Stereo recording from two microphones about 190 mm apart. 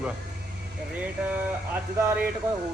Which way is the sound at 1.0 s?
10° right (ahead or behind).